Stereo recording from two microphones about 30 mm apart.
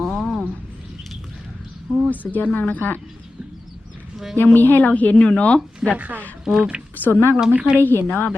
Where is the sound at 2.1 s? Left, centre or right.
Left.